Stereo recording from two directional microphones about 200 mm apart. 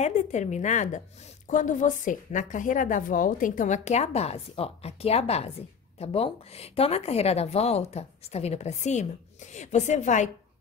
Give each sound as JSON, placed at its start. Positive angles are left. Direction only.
{"t": 0.0, "sound": "speech", "side_deg": 35}